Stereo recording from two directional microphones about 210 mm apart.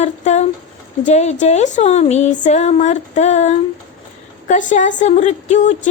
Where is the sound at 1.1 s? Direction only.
30° left (ahead or behind).